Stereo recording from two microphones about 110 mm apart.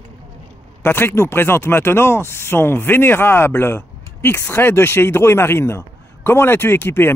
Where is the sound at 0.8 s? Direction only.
20° left (ahead or behind).